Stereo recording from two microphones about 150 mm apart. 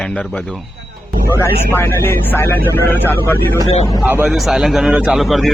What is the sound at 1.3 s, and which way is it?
Speech, 15° left (ahead or behind).